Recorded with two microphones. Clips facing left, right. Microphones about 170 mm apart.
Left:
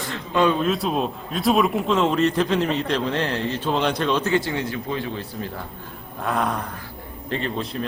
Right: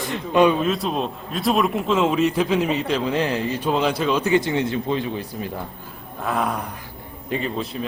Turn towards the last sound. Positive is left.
turn(degrees=-5)  # may be behind; listen again after turning